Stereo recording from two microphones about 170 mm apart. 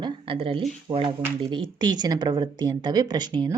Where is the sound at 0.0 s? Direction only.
30° right (ahead or behind).